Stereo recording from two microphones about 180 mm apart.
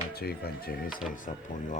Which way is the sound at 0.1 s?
60° left (ahead or behind).